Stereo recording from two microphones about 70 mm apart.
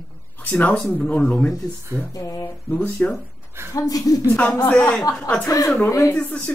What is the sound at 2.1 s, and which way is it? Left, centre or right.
Speech, left.